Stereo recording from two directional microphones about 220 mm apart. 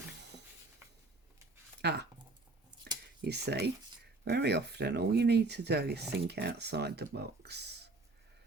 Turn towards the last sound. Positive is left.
turn(degrees=-50)  # may be behind; listen again after turning